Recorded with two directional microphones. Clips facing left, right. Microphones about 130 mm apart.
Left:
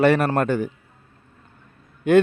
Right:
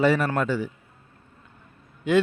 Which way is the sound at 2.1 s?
55° left (ahead or behind).